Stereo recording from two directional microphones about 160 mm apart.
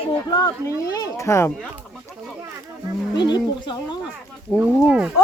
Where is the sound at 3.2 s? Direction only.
30° left (ahead or behind).